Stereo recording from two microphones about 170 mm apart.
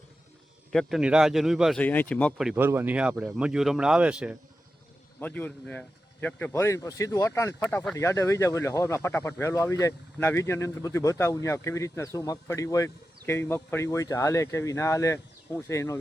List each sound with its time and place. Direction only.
0.7 s a man's voice: centre (ahead or behind)
1.8 s speech: 10° left (ahead or behind)
2.4 s a man's voice: 5° right (ahead or behind)
5.2 s speech: 10° left (ahead or behind)